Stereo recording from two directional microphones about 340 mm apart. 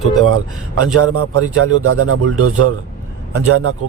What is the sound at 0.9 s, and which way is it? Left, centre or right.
Speech, right.